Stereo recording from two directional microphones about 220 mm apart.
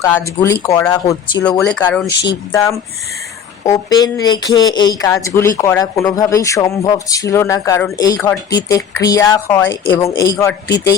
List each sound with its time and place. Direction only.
0.0 s speech: 15° left (ahead or behind)
1.5 s speech: 5° left (ahead or behind)
2.2 s speech: 15° left (ahead or behind)